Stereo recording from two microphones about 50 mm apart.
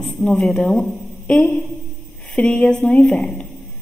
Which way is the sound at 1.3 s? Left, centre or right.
Left.